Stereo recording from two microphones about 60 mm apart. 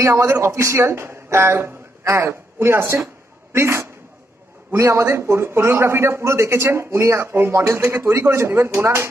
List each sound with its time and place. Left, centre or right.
0.0 s a man's voice: right